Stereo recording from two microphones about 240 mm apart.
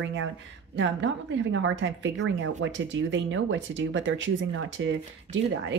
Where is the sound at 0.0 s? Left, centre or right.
Right.